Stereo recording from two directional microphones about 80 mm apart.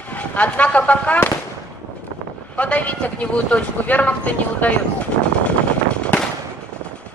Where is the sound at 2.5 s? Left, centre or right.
Centre.